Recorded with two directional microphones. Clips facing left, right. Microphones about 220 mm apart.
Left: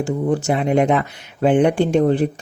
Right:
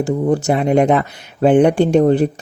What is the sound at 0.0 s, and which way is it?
Speech, 40° right (ahead or behind).